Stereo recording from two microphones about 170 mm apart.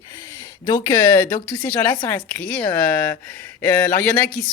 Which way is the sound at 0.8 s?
15° left (ahead or behind).